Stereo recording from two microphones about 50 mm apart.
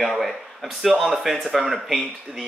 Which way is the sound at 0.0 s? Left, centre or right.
Centre.